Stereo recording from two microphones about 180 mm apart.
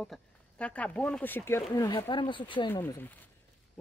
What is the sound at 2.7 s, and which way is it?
Speech, 15° left (ahead or behind).